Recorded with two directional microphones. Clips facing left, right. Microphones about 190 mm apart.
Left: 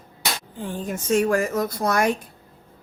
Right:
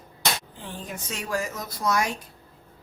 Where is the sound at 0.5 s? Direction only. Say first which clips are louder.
Left 8 dB; 45° left (ahead or behind).